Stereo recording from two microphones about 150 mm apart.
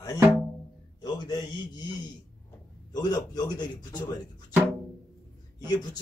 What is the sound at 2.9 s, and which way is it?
A man's voice, 25° left (ahead or behind).